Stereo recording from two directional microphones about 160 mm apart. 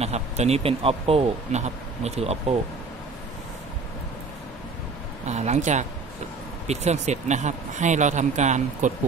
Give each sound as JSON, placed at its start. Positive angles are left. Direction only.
{"t": 0.0, "sound": "speech", "side_deg": -40}
{"t": 5.2, "sound": "speech", "side_deg": -45}